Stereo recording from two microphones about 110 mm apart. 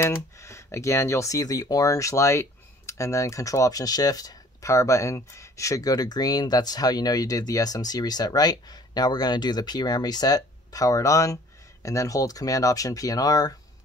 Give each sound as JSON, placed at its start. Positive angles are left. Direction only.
{"t": 0.0, "sound": "speech", "side_deg": 25}